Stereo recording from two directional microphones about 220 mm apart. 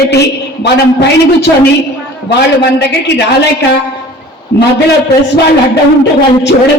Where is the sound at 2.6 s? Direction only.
50° left (ahead or behind).